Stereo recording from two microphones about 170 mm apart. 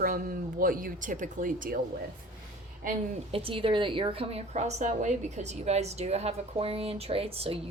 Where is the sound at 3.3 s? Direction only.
30° right (ahead or behind).